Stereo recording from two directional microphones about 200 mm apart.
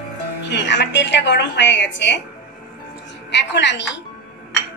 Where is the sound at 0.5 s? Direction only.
60° left (ahead or behind).